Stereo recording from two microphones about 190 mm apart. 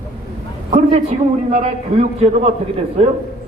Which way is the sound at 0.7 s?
35° right (ahead or behind).